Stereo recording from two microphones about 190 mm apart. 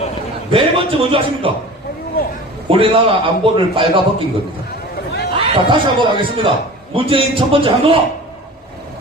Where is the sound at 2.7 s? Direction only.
25° right (ahead or behind).